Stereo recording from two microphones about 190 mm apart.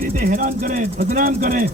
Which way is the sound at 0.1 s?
45° right (ahead or behind).